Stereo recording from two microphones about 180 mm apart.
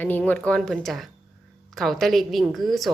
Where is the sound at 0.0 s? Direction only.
10° left (ahead or behind).